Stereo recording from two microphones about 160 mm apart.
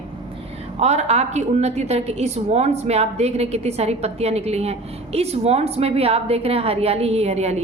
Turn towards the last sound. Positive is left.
turn(degrees=-40)  # may be behind; listen again after turning